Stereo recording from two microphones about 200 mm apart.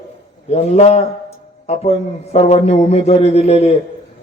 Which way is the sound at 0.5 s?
35° left (ahead or behind).